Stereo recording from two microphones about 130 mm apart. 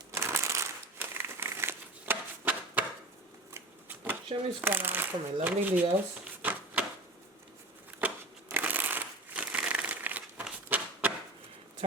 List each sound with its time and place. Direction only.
0.1 s crumpling: 20° right (ahead or behind)
3.5 s shuffling cards: 15° right (ahead or behind)
4.6 s speech: 15° right (ahead or behind)
6.2 s a sound: 10° right (ahead or behind)
8.0 s crumpling: 15° right (ahead or behind)
11.8 s a sound: 50° right (ahead or behind)